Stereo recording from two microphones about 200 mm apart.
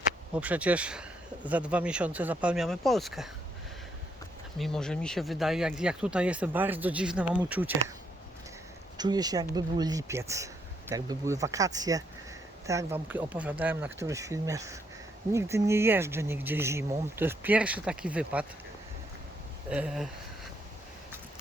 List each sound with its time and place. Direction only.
0.3 s speech: 5° right (ahead or behind)
4.5 s speech: centre (ahead or behind)
9.0 s speech: 20° right (ahead or behind)
19.7 s speech: 5° right (ahead or behind)